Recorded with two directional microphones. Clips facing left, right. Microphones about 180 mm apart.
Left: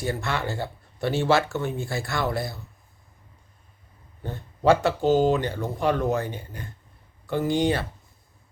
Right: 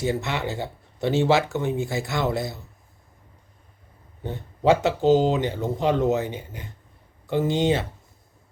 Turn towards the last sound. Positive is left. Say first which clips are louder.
# right 1 dB
turn(degrees=-20)  # may be behind; listen again after turning